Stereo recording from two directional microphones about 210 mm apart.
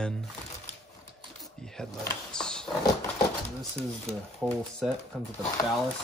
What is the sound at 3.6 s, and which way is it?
Speech, centre (ahead or behind).